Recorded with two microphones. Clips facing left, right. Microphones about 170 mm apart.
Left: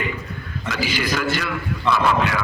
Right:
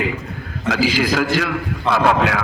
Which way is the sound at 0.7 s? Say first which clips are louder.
Right 6 dB; 90° right.